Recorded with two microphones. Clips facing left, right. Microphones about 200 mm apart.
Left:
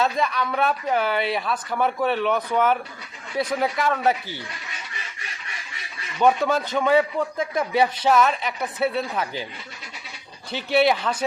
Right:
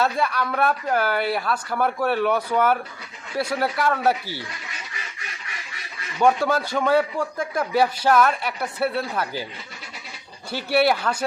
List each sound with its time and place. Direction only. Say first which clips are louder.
0.0 s speech: even; 5° right (ahead or behind)
6.1 s speech: even; 5° right (ahead or behind)
10.7 s speech: even; 5° right (ahead or behind)